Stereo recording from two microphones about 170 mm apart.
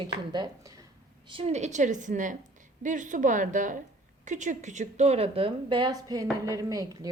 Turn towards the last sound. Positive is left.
turn(degrees=-20)  # may be behind; listen again after turning